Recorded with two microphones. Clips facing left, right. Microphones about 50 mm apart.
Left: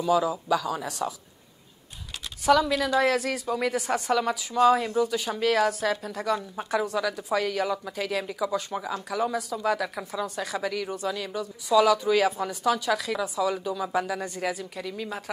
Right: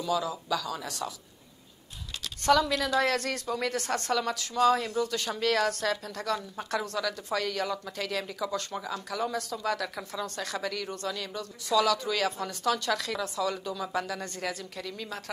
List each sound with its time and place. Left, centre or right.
0.0 s a woman's voice: centre
2.4 s a woman's voice: centre